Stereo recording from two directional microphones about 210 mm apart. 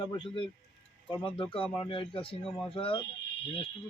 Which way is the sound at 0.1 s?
25° left (ahead or behind).